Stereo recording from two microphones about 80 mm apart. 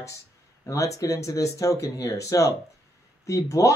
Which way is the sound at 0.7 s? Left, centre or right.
Left.